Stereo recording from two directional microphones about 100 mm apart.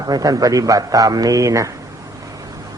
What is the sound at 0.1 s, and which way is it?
A man's voice, 40° right (ahead or behind).